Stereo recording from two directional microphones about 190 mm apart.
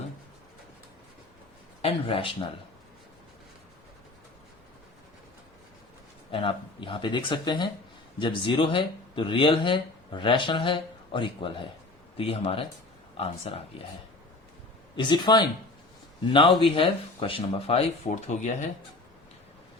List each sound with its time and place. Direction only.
1.8 s speech: 30° left (ahead or behind)
6.3 s speech: 25° left (ahead or behind)
14.9 s speech: 25° left (ahead or behind)
16.6 s speech: 25° left (ahead or behind)